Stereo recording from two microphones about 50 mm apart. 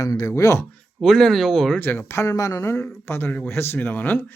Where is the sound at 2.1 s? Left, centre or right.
Left.